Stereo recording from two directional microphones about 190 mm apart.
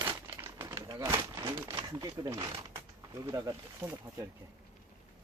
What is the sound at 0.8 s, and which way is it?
Speech, 15° right (ahead or behind).